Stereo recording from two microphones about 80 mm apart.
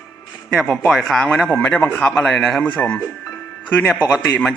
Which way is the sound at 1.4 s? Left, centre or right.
Left.